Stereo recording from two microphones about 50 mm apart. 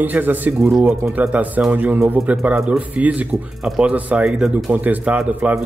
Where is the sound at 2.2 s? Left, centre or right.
Right.